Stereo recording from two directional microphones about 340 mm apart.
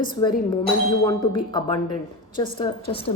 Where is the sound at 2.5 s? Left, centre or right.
Centre.